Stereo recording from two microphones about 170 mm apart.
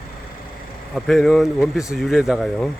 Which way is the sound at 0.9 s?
Centre (ahead or behind).